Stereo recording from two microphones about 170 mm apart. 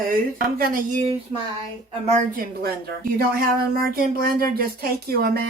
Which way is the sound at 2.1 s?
55° right (ahead or behind).